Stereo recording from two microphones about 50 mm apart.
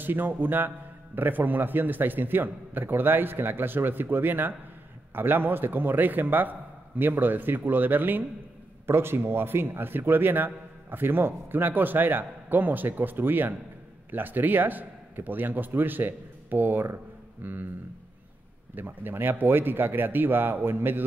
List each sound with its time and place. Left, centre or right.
0.0 s a man's voice: right
8.8 s a man's voice: right
18.8 s a man's voice: right